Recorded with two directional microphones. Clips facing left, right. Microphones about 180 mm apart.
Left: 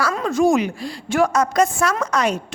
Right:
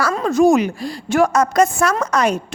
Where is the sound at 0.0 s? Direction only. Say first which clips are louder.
Right 3 dB; 35° right (ahead or behind).